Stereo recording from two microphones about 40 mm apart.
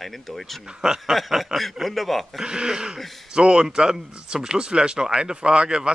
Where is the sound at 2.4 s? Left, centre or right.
Centre.